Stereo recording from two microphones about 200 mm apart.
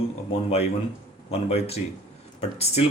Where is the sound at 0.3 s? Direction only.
30° left (ahead or behind).